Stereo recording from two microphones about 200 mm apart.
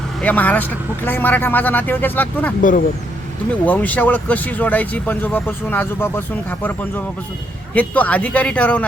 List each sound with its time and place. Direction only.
0.2 s speech: 10° left (ahead or behind)
2.6 s speech: 45° left (ahead or behind)
3.7 s speech: 10° left (ahead or behind)